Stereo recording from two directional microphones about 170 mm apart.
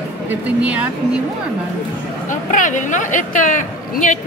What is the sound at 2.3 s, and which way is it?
A woman's voice, 50° left (ahead or behind).